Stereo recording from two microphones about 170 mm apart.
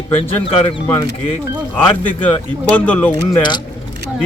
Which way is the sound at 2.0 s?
10° left (ahead or behind).